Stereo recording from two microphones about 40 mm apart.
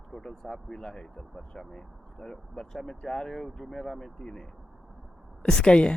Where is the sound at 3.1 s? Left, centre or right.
Centre.